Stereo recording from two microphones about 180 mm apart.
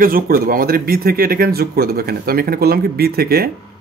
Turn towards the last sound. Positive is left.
turn(degrees=-60)  # may be behind; listen again after turning